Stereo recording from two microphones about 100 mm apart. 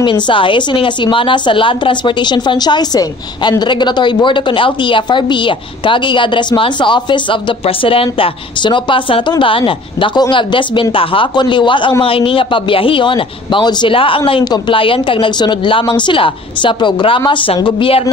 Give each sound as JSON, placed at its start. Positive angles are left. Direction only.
{"t": 0.0, "sound": "a woman's voice", "side_deg": 55}
{"t": 7.6, "sound": "a man's voice", "side_deg": 65}
{"t": 12.0, "sound": "a man's voice", "side_deg": 65}